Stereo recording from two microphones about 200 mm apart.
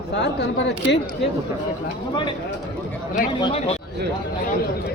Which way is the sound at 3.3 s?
25° left (ahead or behind).